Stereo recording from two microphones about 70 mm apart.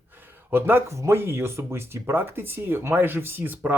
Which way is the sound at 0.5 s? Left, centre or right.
Right.